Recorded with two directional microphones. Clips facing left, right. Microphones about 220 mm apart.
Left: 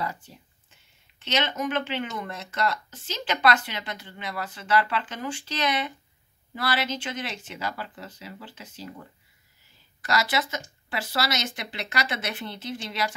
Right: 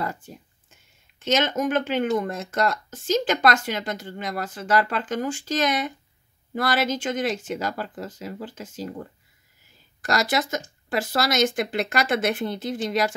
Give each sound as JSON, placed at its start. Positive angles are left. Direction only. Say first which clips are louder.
{"t": 0.0, "sound": "a sound", "louder": "right 3 dB", "side_deg": -50}
{"t": 1.2, "sound": "speech", "louder": "right 5 dB", "side_deg": -45}
{"t": 10.0, "sound": "speech", "louder": "right 3 dB", "side_deg": -45}